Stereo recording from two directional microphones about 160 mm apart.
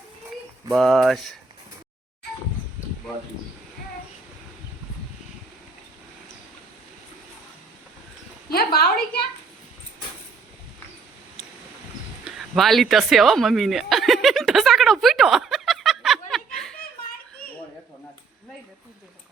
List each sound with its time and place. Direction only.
0.7 s speech: centre (ahead or behind)
8.4 s a woman's voice: 75° left (ahead or behind)
12.2 s a sound: centre (ahead or behind)